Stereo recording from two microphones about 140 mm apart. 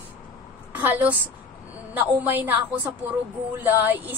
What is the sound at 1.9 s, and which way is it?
A woman's voice, 15° right (ahead or behind).